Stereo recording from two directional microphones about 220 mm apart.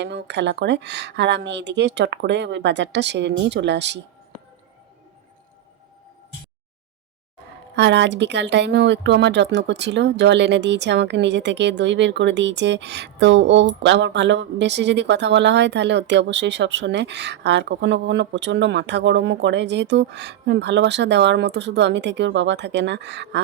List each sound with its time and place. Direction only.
0.0 s speech: 50° right (ahead or behind)
7.8 s speech: 50° right (ahead or behind)